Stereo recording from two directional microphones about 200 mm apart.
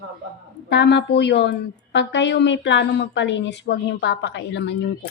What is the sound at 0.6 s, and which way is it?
A woman's voice, 60° left (ahead or behind).